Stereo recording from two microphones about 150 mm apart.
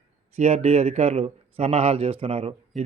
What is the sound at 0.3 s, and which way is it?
A man's voice, 45° right (ahead or behind).